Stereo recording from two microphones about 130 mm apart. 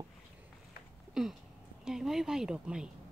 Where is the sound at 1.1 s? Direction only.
5° right (ahead or behind).